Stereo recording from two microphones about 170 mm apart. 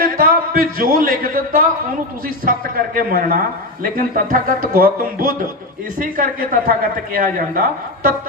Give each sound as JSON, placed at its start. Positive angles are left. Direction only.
{"t": 0.2, "sound": "speech", "side_deg": -60}
{"t": 6.0, "sound": "speech", "side_deg": -55}